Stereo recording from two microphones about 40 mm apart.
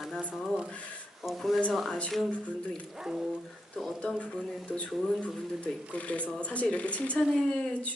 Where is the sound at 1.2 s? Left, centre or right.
Centre.